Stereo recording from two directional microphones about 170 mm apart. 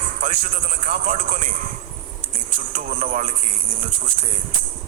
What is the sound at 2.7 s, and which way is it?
Speech, 50° right (ahead or behind).